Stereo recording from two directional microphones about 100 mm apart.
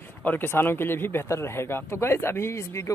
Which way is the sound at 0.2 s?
20° left (ahead or behind).